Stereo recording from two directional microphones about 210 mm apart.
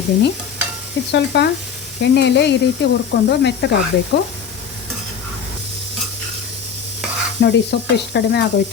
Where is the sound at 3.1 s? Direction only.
50° left (ahead or behind).